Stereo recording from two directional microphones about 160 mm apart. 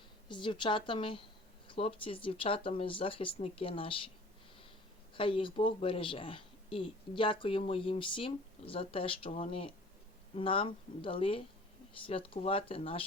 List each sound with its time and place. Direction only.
0.3 s speech: 30° left (ahead or behind)
5.1 s speech: 35° left (ahead or behind)